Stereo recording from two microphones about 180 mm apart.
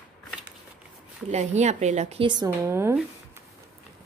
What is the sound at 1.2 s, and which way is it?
Speech, 40° right (ahead or behind).